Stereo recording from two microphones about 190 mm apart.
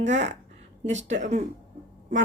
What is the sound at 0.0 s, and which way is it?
Speech, 35° right (ahead or behind).